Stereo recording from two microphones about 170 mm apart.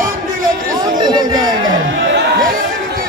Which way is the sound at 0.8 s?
25° right (ahead or behind).